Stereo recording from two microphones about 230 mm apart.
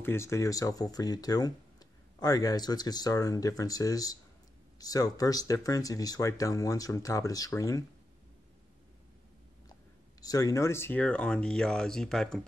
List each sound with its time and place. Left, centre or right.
0.0 s speech: centre
10.2 s speech: centre